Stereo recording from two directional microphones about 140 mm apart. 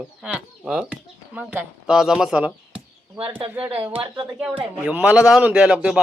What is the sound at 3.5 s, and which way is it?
Speech, 10° right (ahead or behind).